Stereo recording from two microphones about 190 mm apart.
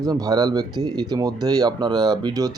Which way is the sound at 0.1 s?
20° right (ahead or behind).